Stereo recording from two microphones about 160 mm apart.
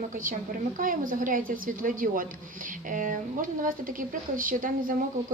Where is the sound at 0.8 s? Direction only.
60° right (ahead or behind).